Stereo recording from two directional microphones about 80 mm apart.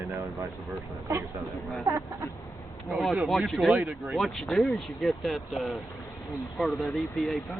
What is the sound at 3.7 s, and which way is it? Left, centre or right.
Speech, centre.